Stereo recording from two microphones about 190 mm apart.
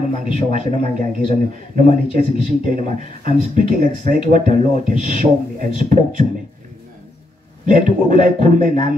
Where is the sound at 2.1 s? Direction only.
45° right (ahead or behind).